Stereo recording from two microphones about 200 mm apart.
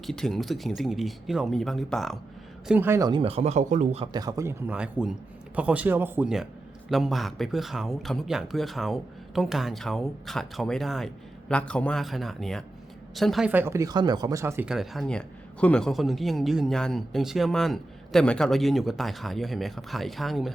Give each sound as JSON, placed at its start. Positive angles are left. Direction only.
{"t": 0.0, "sound": "speech", "side_deg": 0}
{"t": 2.6, "sound": "speech", "side_deg": -10}
{"t": 4.0, "sound": "speech", "side_deg": -20}